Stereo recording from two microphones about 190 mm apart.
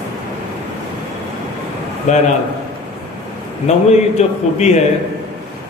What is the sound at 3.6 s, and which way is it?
A man's voice, 35° left (ahead or behind).